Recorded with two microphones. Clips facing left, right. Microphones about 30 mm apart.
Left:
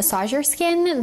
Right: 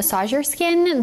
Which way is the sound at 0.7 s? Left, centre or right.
Centre.